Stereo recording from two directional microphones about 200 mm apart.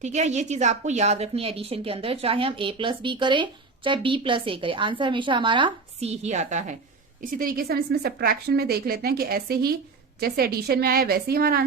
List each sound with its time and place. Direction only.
0.0 s a woman's voice: 35° right (ahead or behind)